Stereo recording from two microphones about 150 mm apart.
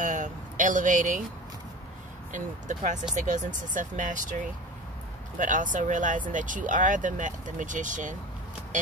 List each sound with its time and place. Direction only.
0.0 s a sound: 60° right (ahead or behind)
2.3 s speech: 55° right (ahead or behind)
5.4 s speech: 60° right (ahead or behind)